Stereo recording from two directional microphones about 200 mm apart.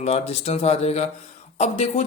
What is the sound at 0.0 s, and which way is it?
Speech, 30° left (ahead or behind).